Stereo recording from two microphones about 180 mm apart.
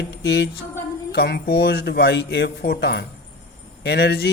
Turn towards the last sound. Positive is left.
turn(degrees=65)  # may be behind; listen again after turning